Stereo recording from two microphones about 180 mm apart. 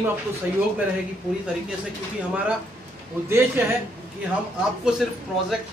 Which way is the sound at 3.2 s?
15° right (ahead or behind).